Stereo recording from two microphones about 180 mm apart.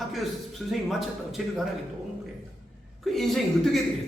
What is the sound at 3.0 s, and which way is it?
Speech, centre (ahead or behind).